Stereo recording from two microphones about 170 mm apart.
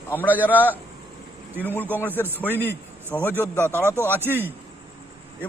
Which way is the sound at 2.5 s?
10° right (ahead or behind).